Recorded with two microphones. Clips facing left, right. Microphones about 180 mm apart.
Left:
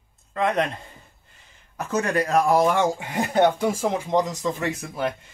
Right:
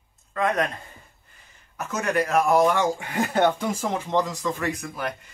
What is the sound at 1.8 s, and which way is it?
Speech, 35° left (ahead or behind).